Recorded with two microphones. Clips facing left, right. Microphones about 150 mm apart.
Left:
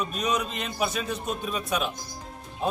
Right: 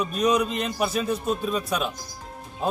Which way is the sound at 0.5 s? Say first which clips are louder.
Right 4 dB; centre (ahead or behind).